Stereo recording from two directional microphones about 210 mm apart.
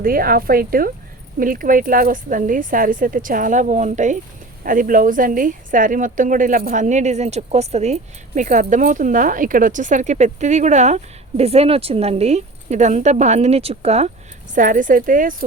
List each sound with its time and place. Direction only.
0.0 s a woman's voice: 45° right (ahead or behind)